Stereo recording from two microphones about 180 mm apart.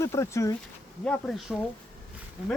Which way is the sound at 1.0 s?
5° left (ahead or behind).